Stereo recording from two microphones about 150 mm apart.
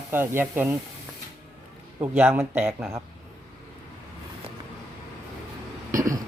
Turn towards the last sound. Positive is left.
turn(degrees=-20)  # may be behind; listen again after turning